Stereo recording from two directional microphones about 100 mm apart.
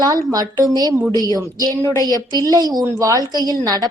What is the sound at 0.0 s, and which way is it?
A woman's voice, 40° right (ahead or behind).